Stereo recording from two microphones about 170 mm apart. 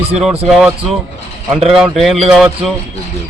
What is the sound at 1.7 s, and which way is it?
Speech, centre (ahead or behind).